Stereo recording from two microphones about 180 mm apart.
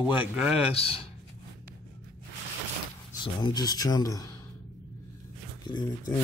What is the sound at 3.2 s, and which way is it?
Speech, 25° left (ahead or behind).